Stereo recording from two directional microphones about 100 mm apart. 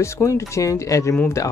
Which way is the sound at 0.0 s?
30° left (ahead or behind).